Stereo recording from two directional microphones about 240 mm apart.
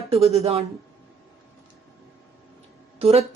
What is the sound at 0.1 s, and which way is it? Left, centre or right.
Speech, right.